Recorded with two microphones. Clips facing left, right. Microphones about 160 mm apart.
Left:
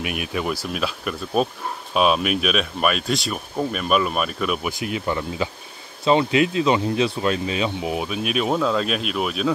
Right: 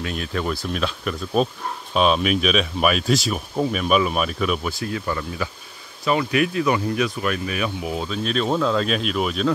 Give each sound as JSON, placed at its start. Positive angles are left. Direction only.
{"t": 0.0, "sound": "speech", "side_deg": 15}
{"t": 4.6, "sound": "speech", "side_deg": 20}